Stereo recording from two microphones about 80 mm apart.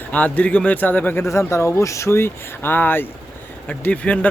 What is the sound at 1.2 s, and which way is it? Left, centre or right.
Speech, left.